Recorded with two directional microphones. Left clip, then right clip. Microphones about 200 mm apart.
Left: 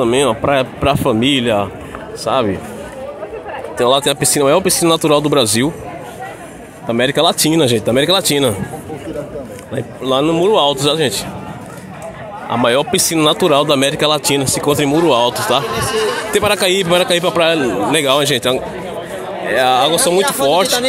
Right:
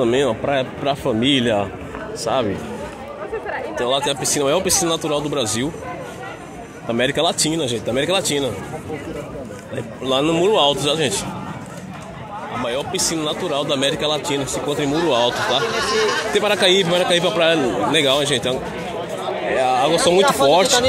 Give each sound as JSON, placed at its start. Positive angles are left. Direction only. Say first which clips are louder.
{"t": 0.0, "sound": "a man's voice", "louder": "left 4 dB", "side_deg": 10}
{"t": 3.7, "sound": "a man's voice", "louder": "left 7 dB", "side_deg": 30}
{"t": 4.8, "sound": "speech", "louder": "left 8 dB", "side_deg": 30}
{"t": 6.9, "sound": "a man's voice", "louder": "left 5 dB", "side_deg": 20}
{"t": 9.8, "sound": "a man's voice", "louder": "left 4 dB", "side_deg": 20}
{"t": 12.6, "sound": "a man's voice", "louder": "left 9 dB", "side_deg": 40}
{"t": 19.5, "sound": "a man's voice", "louder": "left 5 dB", "side_deg": 15}
{"t": 20.4, "sound": "speech", "louder": "left 1 dB", "side_deg": 5}